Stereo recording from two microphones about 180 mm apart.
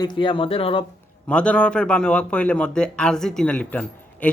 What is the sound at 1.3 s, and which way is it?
Speech, 5° left (ahead or behind).